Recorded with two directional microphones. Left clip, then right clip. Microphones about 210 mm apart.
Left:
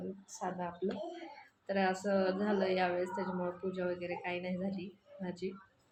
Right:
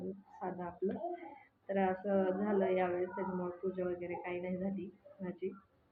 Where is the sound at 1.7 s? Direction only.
15° left (ahead or behind).